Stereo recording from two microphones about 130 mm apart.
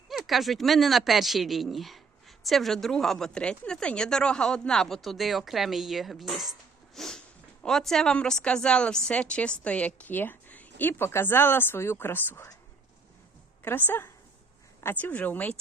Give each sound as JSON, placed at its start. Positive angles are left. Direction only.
{"t": 0.1, "sound": "a woman's voice", "side_deg": 0}
{"t": 13.6, "sound": "a woman's voice", "side_deg": 15}